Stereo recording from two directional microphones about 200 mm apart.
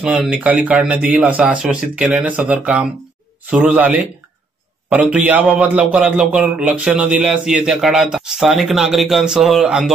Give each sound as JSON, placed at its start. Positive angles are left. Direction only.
{"t": 0.0, "sound": "a man's voice", "side_deg": -5}